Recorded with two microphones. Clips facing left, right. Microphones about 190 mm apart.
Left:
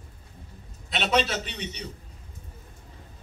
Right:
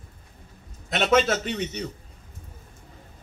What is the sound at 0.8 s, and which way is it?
A man's voice, 50° right (ahead or behind).